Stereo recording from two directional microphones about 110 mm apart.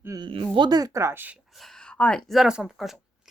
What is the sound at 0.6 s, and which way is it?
Speech, 40° right (ahead or behind).